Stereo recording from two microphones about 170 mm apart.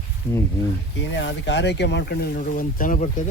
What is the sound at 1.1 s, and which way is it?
Speech, 90° left.